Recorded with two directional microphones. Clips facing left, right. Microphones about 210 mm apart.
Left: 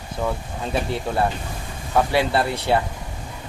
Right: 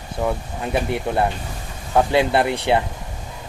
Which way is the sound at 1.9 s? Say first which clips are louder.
Right 3 dB; 20° right (ahead or behind).